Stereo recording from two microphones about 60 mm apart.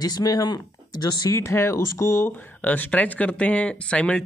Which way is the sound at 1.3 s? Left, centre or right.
Left.